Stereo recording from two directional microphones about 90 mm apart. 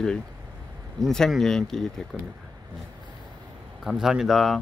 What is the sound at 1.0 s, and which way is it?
Speech, 5° left (ahead or behind).